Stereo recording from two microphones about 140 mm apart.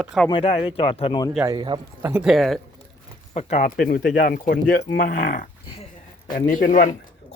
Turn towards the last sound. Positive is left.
turn(degrees=70)  # may be behind; listen again after turning